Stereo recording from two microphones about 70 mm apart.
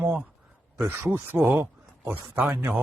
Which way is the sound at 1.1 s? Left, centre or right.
Right.